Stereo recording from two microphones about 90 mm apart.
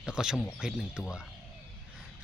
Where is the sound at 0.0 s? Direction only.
5° right (ahead or behind).